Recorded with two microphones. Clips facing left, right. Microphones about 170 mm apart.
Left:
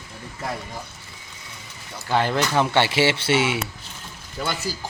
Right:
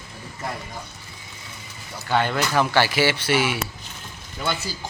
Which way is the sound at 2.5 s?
25° left (ahead or behind).